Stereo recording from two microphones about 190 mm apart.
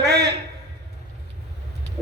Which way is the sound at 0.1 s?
60° right (ahead or behind).